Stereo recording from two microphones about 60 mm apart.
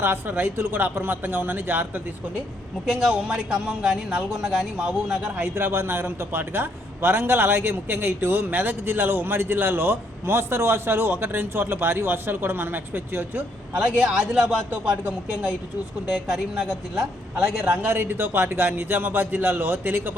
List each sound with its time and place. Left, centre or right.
0.0 s a man's voice: right
2.8 s a man's voice: centre
5.4 s a man's voice: right
13.7 s a man's voice: centre
16.0 s a man's voice: centre
17.7 s a man's voice: right